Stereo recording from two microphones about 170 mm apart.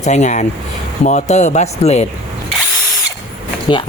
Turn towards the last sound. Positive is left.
turn(degrees=30)  # may be behind; listen again after turning